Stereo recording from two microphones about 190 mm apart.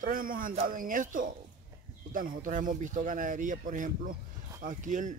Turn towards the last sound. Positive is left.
turn(degrees=-40)  # may be behind; listen again after turning